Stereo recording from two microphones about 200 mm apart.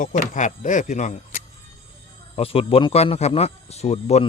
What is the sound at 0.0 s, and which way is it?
Speech, 40° left (ahead or behind).